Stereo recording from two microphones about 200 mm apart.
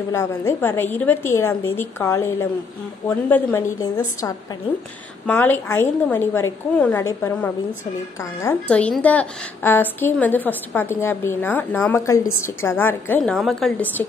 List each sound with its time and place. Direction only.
0.1 s a woman's voice: 15° left (ahead or behind)
5.2 s a woman's voice: 10° left (ahead or behind)